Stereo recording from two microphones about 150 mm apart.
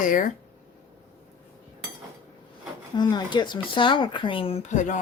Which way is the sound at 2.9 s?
30° left (ahead or behind).